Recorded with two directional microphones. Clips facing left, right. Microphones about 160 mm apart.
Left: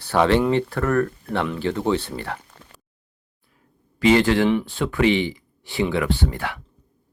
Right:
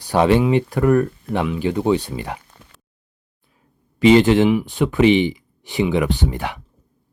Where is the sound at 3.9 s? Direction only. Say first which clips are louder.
Right 4 dB; 20° right (ahead or behind).